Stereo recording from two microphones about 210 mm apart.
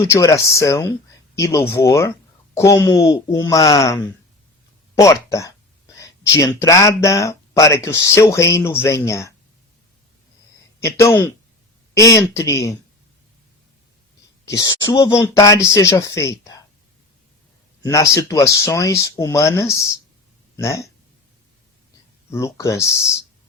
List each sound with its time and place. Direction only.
0.0 s speech: 15° left (ahead or behind)
10.8 s speech: 15° left (ahead or behind)
14.4 s speech: 15° left (ahead or behind)
17.8 s speech: 15° left (ahead or behind)
22.3 s speech: 15° left (ahead or behind)